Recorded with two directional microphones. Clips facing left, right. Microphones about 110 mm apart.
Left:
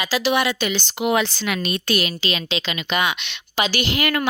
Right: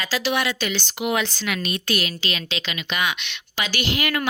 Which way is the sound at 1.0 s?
30° left (ahead or behind).